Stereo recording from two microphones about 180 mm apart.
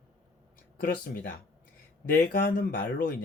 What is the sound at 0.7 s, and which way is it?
Speech, 55° left (ahead or behind).